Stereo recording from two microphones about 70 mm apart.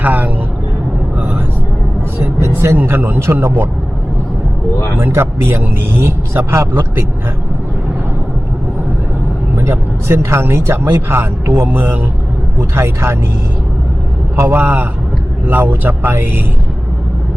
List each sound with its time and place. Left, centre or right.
0.0 s vehicle: right
2.4 s vehicle: right
4.9 s speech: right
9.6 s speech: right
14.3 s speech: right